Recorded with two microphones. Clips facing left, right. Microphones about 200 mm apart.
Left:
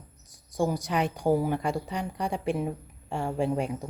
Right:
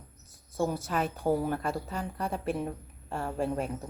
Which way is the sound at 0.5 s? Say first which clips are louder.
Left 3 dB; 15° left (ahead or behind).